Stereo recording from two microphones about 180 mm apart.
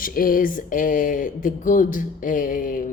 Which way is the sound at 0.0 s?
50° left (ahead or behind).